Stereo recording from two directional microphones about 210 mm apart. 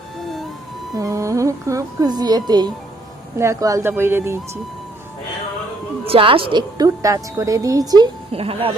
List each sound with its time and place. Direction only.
0.9 s music: 15° right (ahead or behind)
3.3 s speech: 15° right (ahead or behind)
6.1 s a woman's voice: 25° right (ahead or behind)